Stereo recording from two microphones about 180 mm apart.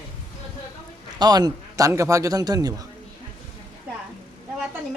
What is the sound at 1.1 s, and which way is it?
Speech, 20° right (ahead or behind).